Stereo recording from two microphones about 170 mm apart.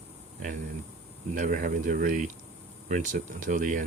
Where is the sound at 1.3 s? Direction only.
50° right (ahead or behind).